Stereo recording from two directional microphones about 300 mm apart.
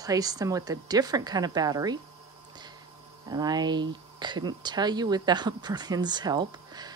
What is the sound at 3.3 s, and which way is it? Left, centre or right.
Speech, centre.